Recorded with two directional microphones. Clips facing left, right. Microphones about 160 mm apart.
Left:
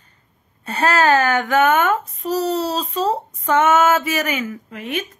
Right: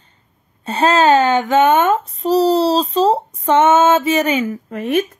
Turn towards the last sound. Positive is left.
turn(degrees=-40)  # may be behind; listen again after turning